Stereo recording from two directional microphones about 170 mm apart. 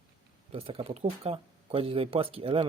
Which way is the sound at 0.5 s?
35° right (ahead or behind).